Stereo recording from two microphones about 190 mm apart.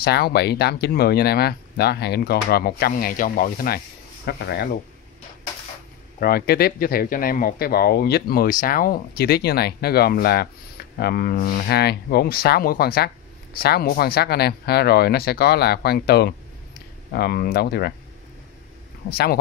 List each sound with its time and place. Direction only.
0.0 s speech: 55° left (ahead or behind)
6.1 s speech: 50° left (ahead or behind)
19.0 s speech: 55° left (ahead or behind)